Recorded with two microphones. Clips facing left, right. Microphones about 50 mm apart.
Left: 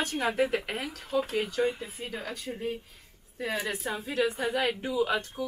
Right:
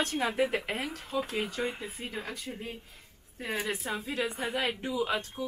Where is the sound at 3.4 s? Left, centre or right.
Centre.